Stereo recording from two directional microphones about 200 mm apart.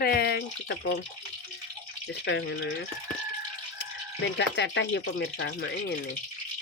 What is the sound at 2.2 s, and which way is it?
Speech, 60° left (ahead or behind).